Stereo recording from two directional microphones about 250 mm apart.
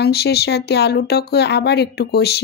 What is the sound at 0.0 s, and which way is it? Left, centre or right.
Speech, left.